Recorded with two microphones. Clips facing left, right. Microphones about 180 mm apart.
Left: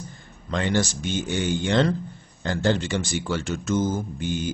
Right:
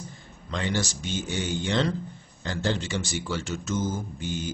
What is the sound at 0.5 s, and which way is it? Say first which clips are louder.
A man's voice: left 5 dB; 55° left (ahead or behind).